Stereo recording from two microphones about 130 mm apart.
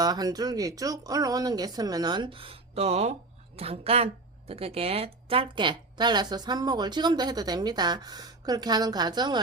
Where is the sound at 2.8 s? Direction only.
55° right (ahead or behind).